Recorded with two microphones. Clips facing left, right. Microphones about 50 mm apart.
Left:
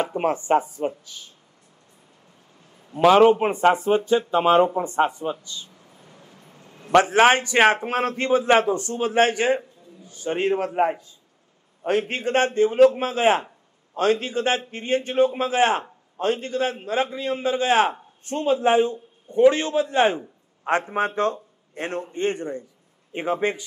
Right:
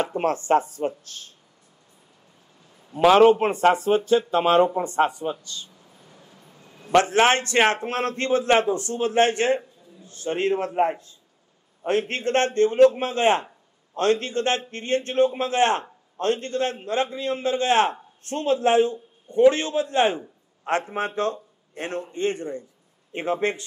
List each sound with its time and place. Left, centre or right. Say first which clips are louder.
0.0 s a man's voice: even; centre
3.2 s a man's voice: even; centre
3.7 s a man's voice: even; left
5.9 s a sound: left 2 dB; left
7.0 s a man's voice: left 2 dB; centre
11.9 s a man's voice: even; left